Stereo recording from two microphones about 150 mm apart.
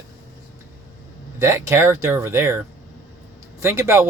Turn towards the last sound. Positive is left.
turn(degrees=-15)  # may be behind; listen again after turning